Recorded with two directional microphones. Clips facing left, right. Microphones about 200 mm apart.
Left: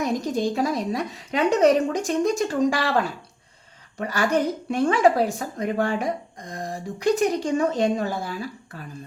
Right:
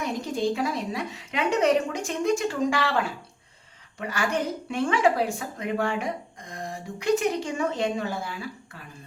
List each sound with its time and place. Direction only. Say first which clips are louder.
0.0 s a woman's voice: left 3 dB; 40° left (ahead or behind)